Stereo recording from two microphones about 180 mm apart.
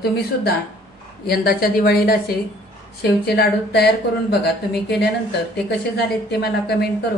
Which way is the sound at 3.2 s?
65° left (ahead or behind).